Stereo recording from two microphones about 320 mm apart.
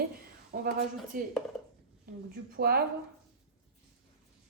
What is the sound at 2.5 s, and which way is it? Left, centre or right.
Speech, right.